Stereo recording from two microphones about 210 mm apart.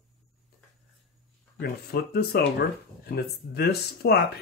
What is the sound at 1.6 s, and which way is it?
Speech, 50° left (ahead or behind).